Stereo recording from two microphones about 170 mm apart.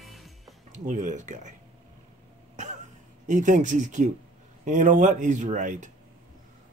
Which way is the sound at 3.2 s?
45° right (ahead or behind).